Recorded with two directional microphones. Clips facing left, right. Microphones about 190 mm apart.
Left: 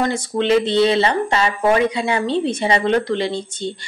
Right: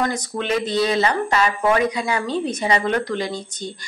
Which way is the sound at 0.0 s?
25° left (ahead or behind).